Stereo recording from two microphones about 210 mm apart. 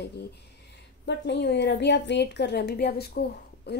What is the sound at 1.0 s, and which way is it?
A woman's voice, 55° left (ahead or behind).